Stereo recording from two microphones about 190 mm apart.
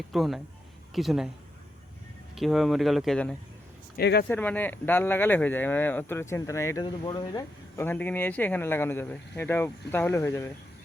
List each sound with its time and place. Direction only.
0.1 s speech: centre (ahead or behind)
2.3 s speech: centre (ahead or behind)
3.9 s speech: 55° left (ahead or behind)
4.3 s speech: 10° left (ahead or behind)
7.8 s speech: 10° left (ahead or behind)